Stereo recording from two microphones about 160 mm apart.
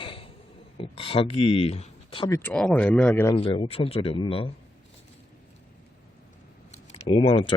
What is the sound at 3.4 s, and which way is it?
Speech, 35° left (ahead or behind).